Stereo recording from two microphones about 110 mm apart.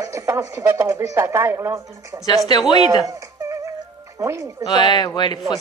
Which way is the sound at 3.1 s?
30° right (ahead or behind).